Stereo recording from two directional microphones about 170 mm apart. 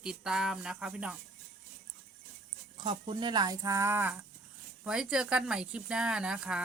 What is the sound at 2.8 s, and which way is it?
A woman's voice, 30° right (ahead or behind).